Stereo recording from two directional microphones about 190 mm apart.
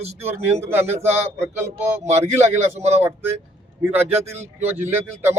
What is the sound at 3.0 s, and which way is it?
Speech, 10° right (ahead or behind).